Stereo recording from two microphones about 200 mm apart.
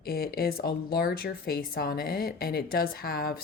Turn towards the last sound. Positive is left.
turn(degrees=50)  # may be behind; listen again after turning